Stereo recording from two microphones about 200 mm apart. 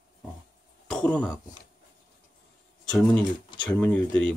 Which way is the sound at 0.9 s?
5° left (ahead or behind).